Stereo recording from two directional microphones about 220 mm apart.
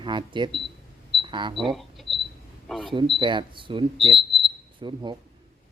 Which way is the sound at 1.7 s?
Centre (ahead or behind).